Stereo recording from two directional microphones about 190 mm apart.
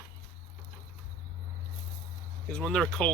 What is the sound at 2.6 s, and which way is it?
Speech, centre (ahead or behind).